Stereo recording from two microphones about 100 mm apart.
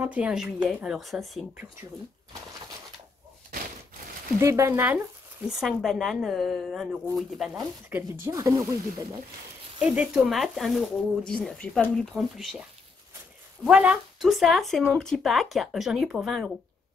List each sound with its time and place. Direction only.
0.0 s a woman's voice: 10° right (ahead or behind)
4.4 s speech: 30° right (ahead or behind)
5.5 s speech: 5° right (ahead or behind)
7.9 s speech: 25° right (ahead or behind)
8.4 s speech: 35° right (ahead or behind)
9.8 s speech: 10° right (ahead or behind)
13.7 s speech: 10° right (ahead or behind)